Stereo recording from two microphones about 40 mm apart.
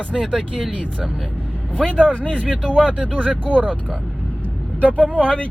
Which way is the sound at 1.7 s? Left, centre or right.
Left.